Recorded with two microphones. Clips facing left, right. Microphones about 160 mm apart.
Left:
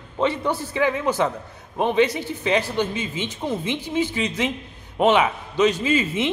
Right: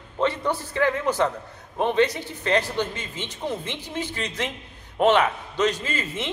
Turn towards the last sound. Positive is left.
turn(degrees=10)  # may be behind; listen again after turning